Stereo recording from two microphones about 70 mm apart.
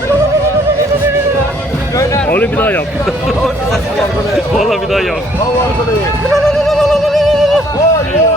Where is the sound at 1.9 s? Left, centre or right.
Left.